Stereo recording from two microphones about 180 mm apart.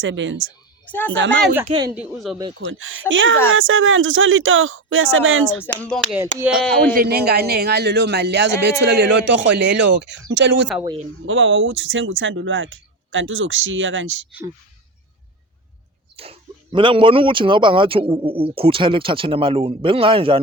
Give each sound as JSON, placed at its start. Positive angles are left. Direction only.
{"t": 0.0, "sound": "speech", "side_deg": -90}
{"t": 0.9, "sound": "a woman's voice", "side_deg": 10}
{"t": 1.1, "sound": "speech", "side_deg": -80}
{"t": 1.6, "sound": "speech", "side_deg": -25}
{"t": 2.0, "sound": "speech", "side_deg": 0}
{"t": 2.6, "sound": "speech", "side_deg": -90}
{"t": 5.6, "sound": "speech", "side_deg": 5}
{"t": 6.9, "sound": "a man's voice", "side_deg": -60}
{"t": 10.3, "sound": "speech", "side_deg": -85}
{"t": 16.1, "sound": "speech", "side_deg": -35}